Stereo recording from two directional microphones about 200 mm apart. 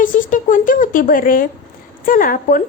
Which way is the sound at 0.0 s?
40° left (ahead or behind).